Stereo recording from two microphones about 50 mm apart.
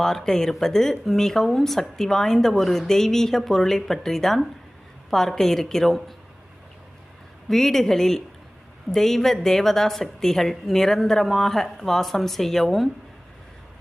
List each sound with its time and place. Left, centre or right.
0.0 s speech: centre
7.5 s speech: centre